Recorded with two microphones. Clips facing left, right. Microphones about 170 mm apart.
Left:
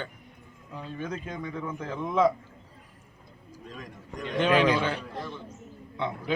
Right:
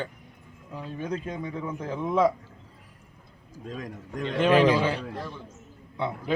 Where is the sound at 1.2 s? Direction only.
10° right (ahead or behind).